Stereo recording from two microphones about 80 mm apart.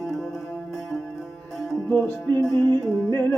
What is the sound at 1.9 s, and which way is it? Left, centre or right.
Music, left.